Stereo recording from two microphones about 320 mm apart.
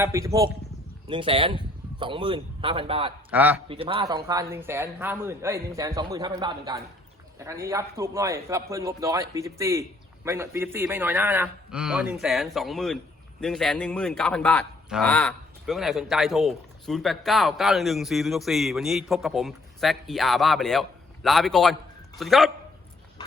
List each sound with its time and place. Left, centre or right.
0.0 s a man's voice: centre
3.3 s a man's voice: centre
3.7 s a man's voice: centre